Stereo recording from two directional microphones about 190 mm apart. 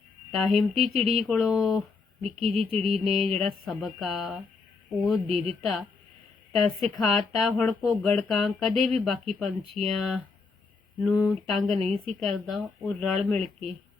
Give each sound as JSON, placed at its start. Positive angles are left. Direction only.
{"t": 0.3, "sound": "speech", "side_deg": 0}
{"t": 3.1, "sound": "a sound", "side_deg": -30}
{"t": 3.3, "sound": "speech", "side_deg": 0}
{"t": 6.5, "sound": "speech", "side_deg": 0}
{"t": 11.3, "sound": "speech", "side_deg": 0}